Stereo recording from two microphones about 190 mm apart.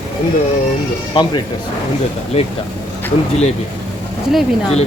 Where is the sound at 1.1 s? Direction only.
25° left (ahead or behind).